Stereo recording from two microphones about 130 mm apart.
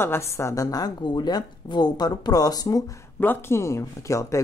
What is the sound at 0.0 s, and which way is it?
A woman's voice, 20° left (ahead or behind).